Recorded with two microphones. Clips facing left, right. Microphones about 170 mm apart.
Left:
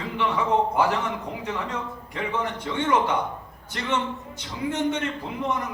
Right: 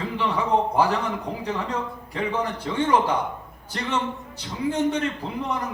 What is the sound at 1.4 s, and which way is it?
A man's voice, 35° right (ahead or behind).